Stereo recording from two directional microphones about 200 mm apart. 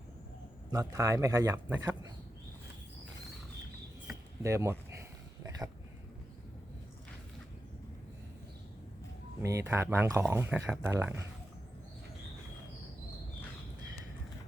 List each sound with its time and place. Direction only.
0.7 s speech: 15° right (ahead or behind)
4.4 s a sound: 15° right (ahead or behind)
9.4 s speech: 15° right (ahead or behind)